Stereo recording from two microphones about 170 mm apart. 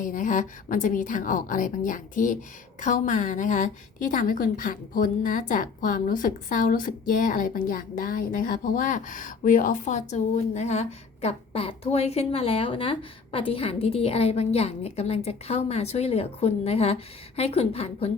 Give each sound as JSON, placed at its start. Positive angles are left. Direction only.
{"t": 0.0, "sound": "a woman's voice", "side_deg": 50}